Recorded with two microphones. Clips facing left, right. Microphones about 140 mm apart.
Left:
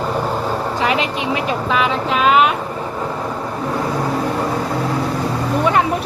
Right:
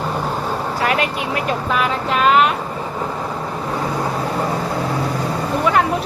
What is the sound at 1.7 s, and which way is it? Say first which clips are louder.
Speech: left 2 dB; centre (ahead or behind).